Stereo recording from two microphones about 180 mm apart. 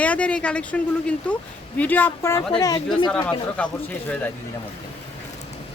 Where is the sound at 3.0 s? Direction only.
5° left (ahead or behind).